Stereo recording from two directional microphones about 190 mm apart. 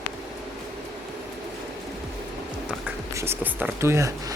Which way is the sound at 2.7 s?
15° right (ahead or behind).